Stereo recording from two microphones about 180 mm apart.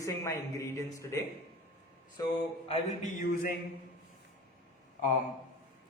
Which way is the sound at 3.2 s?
50° left (ahead or behind).